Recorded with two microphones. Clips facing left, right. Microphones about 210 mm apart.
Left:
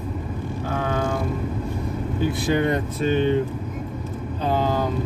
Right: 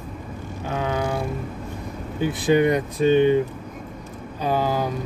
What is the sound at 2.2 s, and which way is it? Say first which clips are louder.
Speech: right 3 dB; 15° right (ahead or behind).